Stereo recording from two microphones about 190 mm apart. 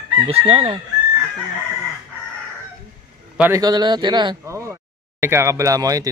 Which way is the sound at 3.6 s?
20° right (ahead or behind).